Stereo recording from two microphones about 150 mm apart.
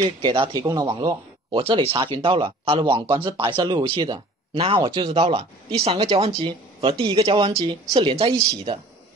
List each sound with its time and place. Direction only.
0.2 s speech: 30° right (ahead or behind)